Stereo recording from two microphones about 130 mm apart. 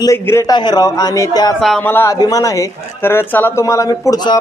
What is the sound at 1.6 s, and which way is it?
Speech, centre (ahead or behind).